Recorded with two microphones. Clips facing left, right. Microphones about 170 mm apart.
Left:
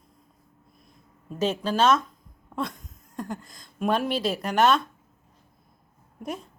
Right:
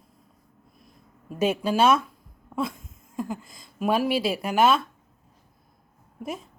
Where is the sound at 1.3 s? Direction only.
10° right (ahead or behind).